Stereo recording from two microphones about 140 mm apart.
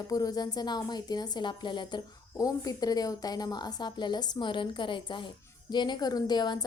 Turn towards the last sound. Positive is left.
turn(degrees=30)  # may be behind; listen again after turning